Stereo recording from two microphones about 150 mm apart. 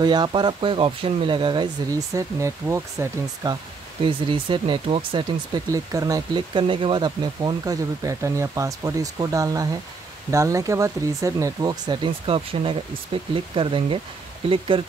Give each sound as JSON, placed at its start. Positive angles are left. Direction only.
{"t": 0.0, "sound": "speech", "side_deg": -30}
{"t": 4.0, "sound": "speech", "side_deg": -35}
{"t": 5.7, "sound": "speech", "side_deg": -25}